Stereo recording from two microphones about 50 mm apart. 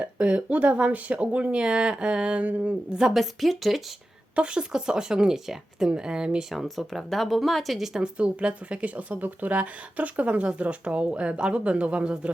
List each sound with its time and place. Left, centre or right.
0.0 s speech: right
3.2 s speech: centre
4.4 s speech: centre
6.5 s speech: centre
7.9 s speech: right